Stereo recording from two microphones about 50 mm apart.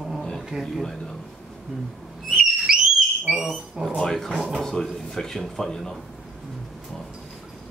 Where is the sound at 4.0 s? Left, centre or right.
Centre.